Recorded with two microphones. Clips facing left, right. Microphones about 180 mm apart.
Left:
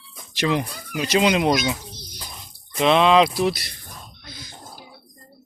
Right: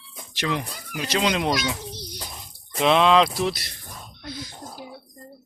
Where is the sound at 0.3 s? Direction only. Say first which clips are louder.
Left 5 dB; 20° left (ahead or behind).